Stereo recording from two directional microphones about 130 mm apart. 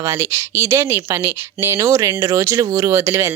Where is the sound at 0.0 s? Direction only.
20° right (ahead or behind).